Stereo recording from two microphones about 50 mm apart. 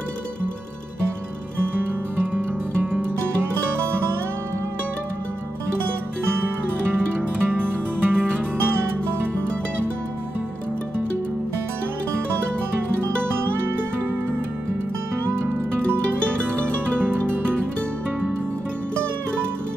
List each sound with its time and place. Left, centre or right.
2.3 s music: right
6.3 s music: right
13.6 s music: right
15.9 s music: right